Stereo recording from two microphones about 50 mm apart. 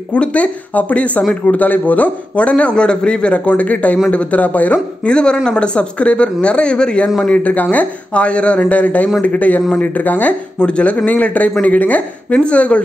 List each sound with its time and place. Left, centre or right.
0.1 s a man's voice: left
5.0 s a man's voice: centre; by 10.3 s left
10.6 s a man's voice: left